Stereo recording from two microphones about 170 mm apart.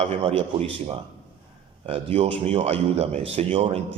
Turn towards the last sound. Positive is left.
turn(degrees=-35)  # may be behind; listen again after turning